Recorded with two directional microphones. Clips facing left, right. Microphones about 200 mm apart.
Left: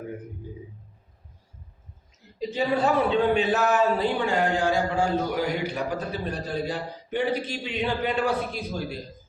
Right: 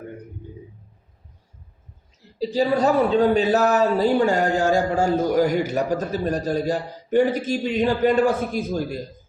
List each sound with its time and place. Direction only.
2.4 s speech: 35° right (ahead or behind)